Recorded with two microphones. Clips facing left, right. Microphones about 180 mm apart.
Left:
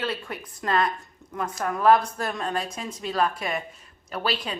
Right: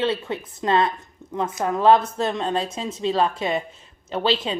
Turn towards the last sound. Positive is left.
turn(degrees=-25)  # may be behind; listen again after turning